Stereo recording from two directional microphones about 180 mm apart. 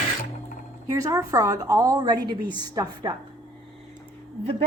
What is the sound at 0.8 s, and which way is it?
A woman's voice, 20° right (ahead or behind).